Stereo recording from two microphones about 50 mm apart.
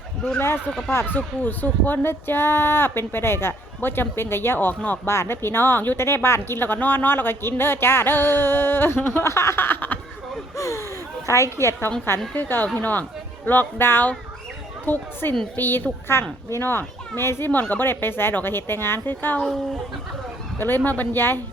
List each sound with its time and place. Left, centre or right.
0.3 s speech: left
1.1 s speech: left
2.0 s speech: left
5.0 s speech: left
6.0 s speech: left
9.2 s a woman's voice: left
9.6 s a sound: left
10.6 s a sound: left
11.3 s a woman's voice: left
12.3 s speech: left
17.5 s speech: left
17.8 s speech: left
20.6 s speech: left